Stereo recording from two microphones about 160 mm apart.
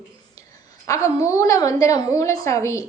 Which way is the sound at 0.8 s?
20° left (ahead or behind).